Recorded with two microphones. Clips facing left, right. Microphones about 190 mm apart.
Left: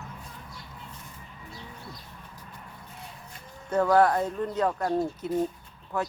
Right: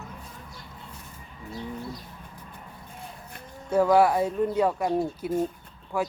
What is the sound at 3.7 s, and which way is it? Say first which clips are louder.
Speech: right 2 dB; 10° right (ahead or behind).